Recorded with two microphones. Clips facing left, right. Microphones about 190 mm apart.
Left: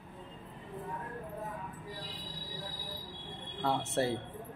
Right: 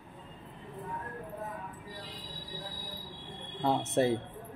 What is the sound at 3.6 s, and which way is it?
Speech, 20° right (ahead or behind).